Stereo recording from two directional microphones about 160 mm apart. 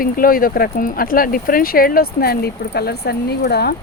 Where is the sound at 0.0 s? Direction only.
65° left (ahead or behind).